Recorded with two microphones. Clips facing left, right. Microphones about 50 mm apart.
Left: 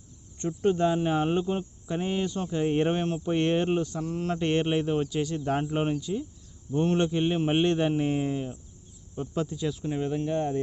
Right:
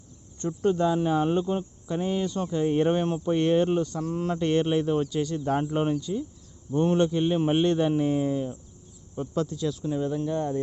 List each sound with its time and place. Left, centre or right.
0.3 s speech: left
4.1 s speech: centre
4.4 s speech: centre
9.9 s speech: left